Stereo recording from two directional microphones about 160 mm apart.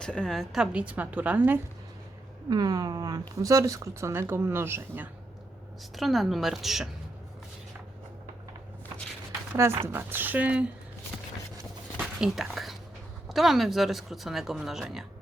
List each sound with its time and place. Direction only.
0.0 s a woman's voice: 5° left (ahead or behind)
2.5 s speech: 25° right (ahead or behind)
6.0 s speech: centre (ahead or behind)
9.6 s a woman's voice: 15° right (ahead or behind)
11.9 s a sound: 5° right (ahead or behind)
13.2 s speech: centre (ahead or behind)